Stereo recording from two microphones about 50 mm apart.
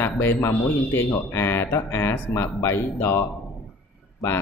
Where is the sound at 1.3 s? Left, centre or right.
Left.